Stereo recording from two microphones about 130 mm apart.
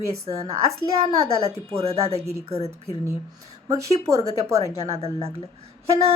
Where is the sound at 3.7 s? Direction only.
25° right (ahead or behind).